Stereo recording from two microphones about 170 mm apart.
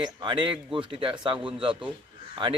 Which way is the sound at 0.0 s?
25° right (ahead or behind).